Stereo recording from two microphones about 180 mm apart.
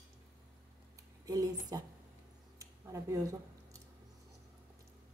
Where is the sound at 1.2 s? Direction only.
20° right (ahead or behind).